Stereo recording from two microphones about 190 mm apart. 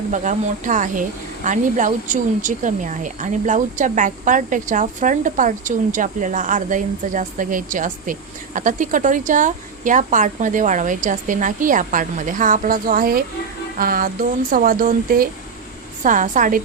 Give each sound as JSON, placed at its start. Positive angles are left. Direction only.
{"t": 0.1, "sound": "speech", "side_deg": -40}